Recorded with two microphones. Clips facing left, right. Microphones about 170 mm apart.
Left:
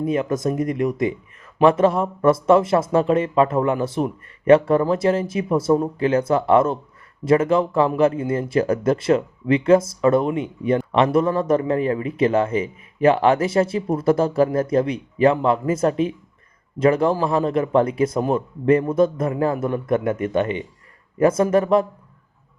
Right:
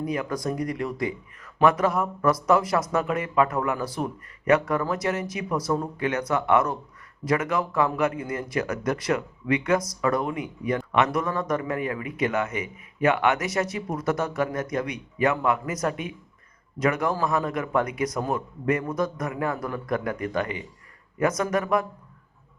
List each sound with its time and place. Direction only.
0.0 s speech: 25° left (ahead or behind)